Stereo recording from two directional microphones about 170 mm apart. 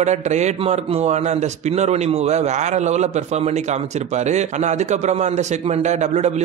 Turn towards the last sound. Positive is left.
turn(degrees=-40)  # may be behind; listen again after turning